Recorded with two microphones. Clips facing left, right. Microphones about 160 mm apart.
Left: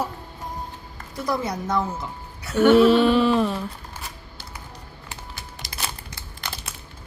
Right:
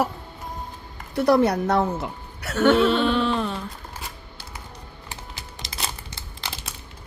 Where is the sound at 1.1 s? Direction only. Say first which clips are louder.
Right 8 dB; 65° right (ahead or behind).